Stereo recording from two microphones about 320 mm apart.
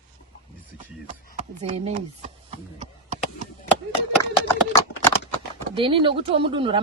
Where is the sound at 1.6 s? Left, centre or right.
Right.